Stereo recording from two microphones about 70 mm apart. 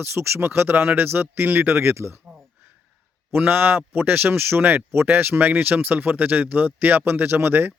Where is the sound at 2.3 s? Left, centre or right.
Right.